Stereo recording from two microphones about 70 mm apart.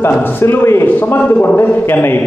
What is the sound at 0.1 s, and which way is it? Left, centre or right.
A man's voice, left.